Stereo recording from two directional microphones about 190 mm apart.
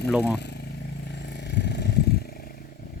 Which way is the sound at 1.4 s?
65° left (ahead or behind).